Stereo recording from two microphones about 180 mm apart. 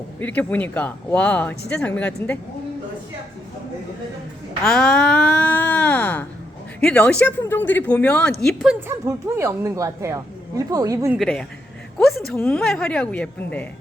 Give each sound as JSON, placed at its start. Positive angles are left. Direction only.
{"t": 0.2, "sound": "speech", "side_deg": 10}
{"t": 4.6, "sound": "speech", "side_deg": 5}
{"t": 8.9, "sound": "speech", "side_deg": -15}
{"t": 11.2, "sound": "a woman's voice", "side_deg": 5}